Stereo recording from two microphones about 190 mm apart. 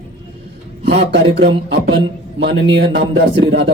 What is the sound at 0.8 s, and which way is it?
A man's voice, 65° right (ahead or behind).